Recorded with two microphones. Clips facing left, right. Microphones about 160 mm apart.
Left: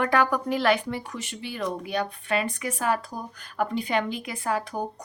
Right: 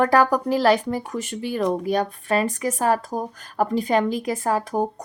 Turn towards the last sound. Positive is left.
turn(degrees=-45)  # may be behind; listen again after turning